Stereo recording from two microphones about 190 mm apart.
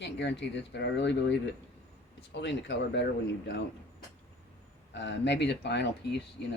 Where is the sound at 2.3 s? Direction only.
70° left (ahead or behind).